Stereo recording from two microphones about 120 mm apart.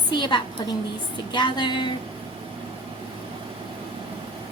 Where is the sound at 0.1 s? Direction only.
40° left (ahead or behind).